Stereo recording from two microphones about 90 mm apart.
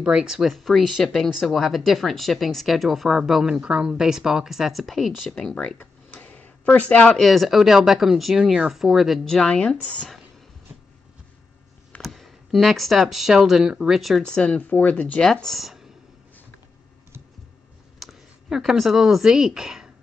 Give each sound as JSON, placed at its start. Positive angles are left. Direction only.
{"t": 0.0, "sound": "speech", "side_deg": -10}
{"t": 5.8, "sound": "a sound", "side_deg": 15}
{"t": 7.2, "sound": "speech", "side_deg": 0}
{"t": 12.0, "sound": "speech", "side_deg": 0}
{"t": 14.2, "sound": "speech", "side_deg": 10}
{"t": 17.9, "sound": "speech", "side_deg": 0}